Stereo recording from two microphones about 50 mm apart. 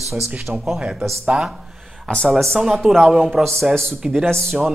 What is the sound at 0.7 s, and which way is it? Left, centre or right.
Speech, centre.